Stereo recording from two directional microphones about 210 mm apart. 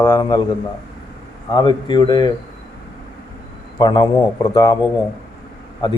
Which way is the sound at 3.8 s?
20° left (ahead or behind).